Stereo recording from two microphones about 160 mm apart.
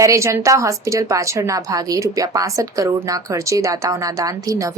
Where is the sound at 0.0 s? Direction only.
20° right (ahead or behind).